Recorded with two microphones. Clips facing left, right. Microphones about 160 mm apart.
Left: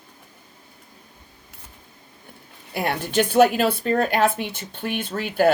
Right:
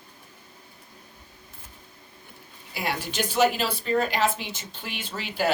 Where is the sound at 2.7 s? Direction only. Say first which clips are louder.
Left 7 dB; 55° left (ahead or behind).